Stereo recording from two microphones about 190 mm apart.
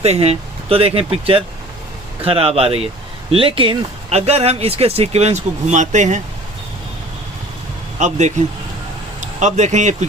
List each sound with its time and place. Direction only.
0.0 s speech: 35° right (ahead or behind)
7.9 s speech: 40° right (ahead or behind)